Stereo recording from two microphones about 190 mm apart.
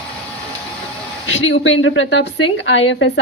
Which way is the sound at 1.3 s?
75° left (ahead or behind).